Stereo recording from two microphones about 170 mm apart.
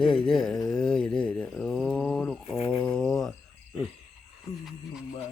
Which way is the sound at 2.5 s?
30° left (ahead or behind).